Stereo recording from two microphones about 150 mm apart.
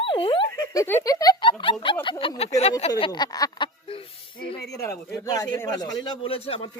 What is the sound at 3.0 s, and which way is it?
Speech, 30° left (ahead or behind).